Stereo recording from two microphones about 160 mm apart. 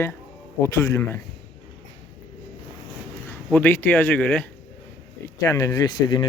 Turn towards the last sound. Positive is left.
turn(degrees=25)  # may be behind; listen again after turning